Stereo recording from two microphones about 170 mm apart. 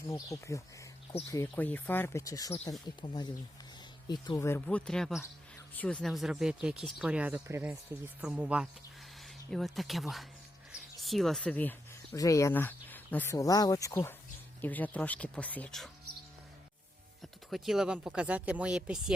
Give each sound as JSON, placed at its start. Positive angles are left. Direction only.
{"t": 0.1, "sound": "speech", "side_deg": 20}
{"t": 17.5, "sound": "speech", "side_deg": 0}